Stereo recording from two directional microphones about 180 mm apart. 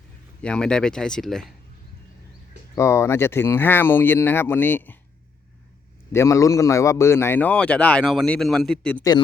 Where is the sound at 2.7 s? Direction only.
15° left (ahead or behind).